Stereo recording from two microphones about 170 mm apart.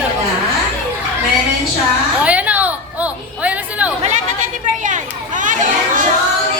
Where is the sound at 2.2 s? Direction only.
10° right (ahead or behind).